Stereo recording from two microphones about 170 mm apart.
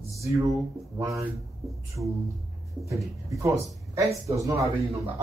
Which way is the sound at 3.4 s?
20° right (ahead or behind).